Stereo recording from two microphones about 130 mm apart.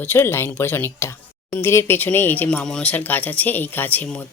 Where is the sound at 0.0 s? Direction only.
15° left (ahead or behind).